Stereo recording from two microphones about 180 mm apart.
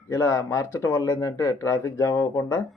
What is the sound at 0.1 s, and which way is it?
A man's voice, 15° left (ahead or behind).